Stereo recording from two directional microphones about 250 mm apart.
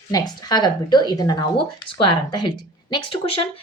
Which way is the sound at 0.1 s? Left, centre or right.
Centre.